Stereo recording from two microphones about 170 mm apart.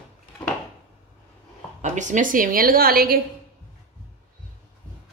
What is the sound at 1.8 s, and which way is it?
A woman's voice, 45° right (ahead or behind).